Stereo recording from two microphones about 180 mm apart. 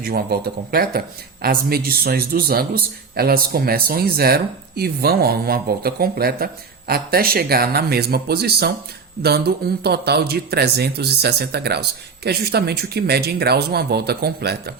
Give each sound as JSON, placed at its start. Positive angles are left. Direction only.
{"t": 0.0, "sound": "speech", "side_deg": -60}